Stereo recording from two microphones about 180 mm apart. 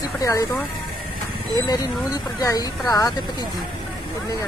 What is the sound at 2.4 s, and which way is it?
Speech, 20° left (ahead or behind).